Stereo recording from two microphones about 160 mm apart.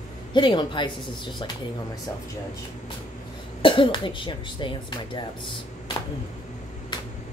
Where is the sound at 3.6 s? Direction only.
35° left (ahead or behind).